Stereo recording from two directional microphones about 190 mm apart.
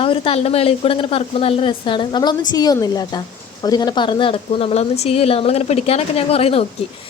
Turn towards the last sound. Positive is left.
turn(degrees=30)  # may be behind; listen again after turning